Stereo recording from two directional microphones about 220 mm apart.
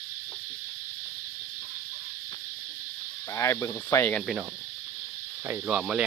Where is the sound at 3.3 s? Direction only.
15° left (ahead or behind).